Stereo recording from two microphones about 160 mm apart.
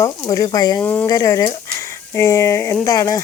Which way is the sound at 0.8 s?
10° left (ahead or behind).